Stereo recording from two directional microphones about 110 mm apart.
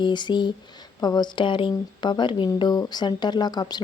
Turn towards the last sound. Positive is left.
turn(degrees=40)  # may be behind; listen again after turning